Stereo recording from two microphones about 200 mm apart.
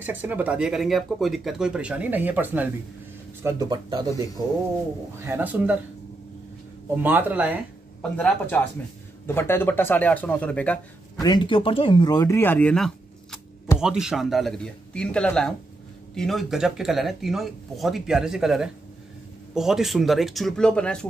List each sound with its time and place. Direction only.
0.0 s speech: 10° right (ahead or behind)
3.4 s speech: 20° right (ahead or behind)
5.2 s speech: 10° right (ahead or behind)
7.0 s speech: 10° right (ahead or behind)
8.0 s speech: 5° left (ahead or behind)
11.1 s speech: 20° left (ahead or behind); by 21.1 s 5° left (ahead or behind)